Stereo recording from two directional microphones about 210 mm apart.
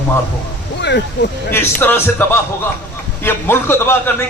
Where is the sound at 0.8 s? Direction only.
55° left (ahead or behind).